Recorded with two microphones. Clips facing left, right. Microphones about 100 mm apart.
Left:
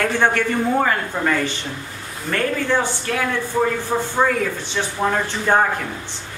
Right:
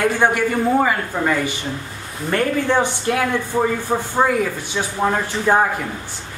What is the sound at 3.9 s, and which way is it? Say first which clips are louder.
A man's voice: right 3 dB; 15° right (ahead or behind).